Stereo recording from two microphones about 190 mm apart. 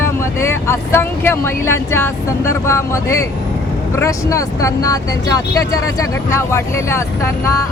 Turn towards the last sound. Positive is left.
turn(degrees=15)  # may be behind; listen again after turning